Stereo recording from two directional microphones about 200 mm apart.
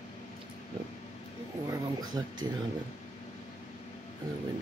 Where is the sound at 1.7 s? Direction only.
20° right (ahead or behind).